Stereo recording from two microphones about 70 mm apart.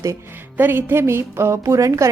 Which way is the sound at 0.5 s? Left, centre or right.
Right.